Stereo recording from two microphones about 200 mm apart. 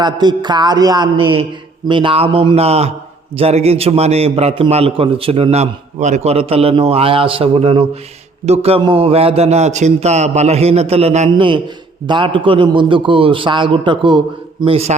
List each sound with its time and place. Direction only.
0.0 s a man's voice: 20° right (ahead or behind)